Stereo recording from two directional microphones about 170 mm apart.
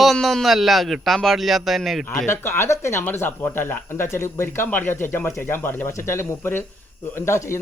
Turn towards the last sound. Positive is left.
turn(degrees=15)  # may be behind; listen again after turning